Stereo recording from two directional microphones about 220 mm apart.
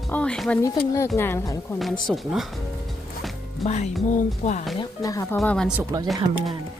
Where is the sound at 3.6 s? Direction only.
30° left (ahead or behind).